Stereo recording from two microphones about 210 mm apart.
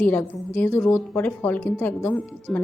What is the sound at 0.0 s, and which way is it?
A woman's voice, 10° left (ahead or behind).